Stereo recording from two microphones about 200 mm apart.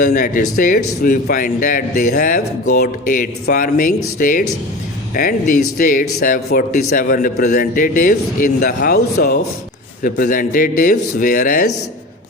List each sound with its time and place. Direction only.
0.0 s speech: 40° left (ahead or behind)